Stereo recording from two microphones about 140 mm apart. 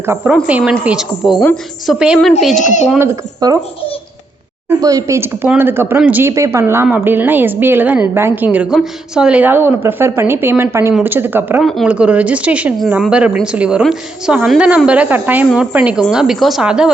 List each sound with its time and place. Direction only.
0.4 s a woman's voice: 10° right (ahead or behind)
3.4 s speech: 30° right (ahead or behind)
4.8 s a woman's voice: 25° right (ahead or behind)
11.6 s a woman's voice: centre (ahead or behind)
11.9 s a woman's voice: 10° right (ahead or behind)